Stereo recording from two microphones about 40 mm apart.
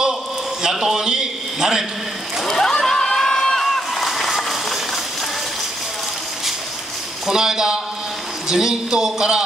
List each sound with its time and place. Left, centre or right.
0.6 s a sound: centre
0.9 s a man's voice: centre
2.4 s slosh: centre
7.2 s a man's voice: centre